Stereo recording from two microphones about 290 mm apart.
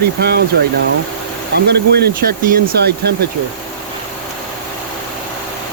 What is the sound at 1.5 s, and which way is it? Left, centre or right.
Speech, right.